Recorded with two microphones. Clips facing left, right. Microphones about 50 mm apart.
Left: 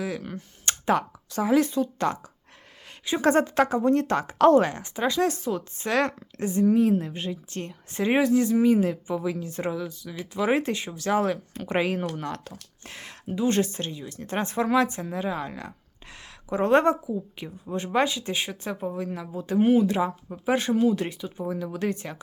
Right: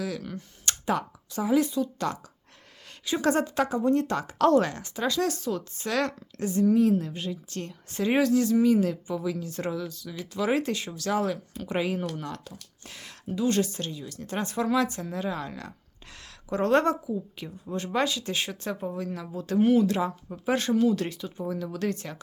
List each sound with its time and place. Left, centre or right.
0.0 s speech: left
0.9 s a woman's voice: left
3.0 s speech: left